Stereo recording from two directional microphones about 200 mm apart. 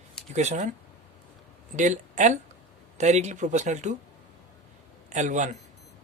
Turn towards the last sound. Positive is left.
turn(degrees=-35)  # may be behind; listen again after turning